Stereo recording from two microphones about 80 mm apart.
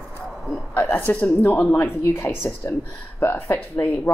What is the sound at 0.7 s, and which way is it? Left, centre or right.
A woman's voice, left.